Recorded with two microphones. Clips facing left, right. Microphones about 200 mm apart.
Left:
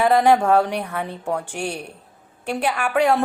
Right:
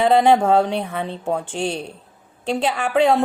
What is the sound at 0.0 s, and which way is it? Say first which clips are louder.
A woman's voice: right 1 dB; 20° right (ahead or behind).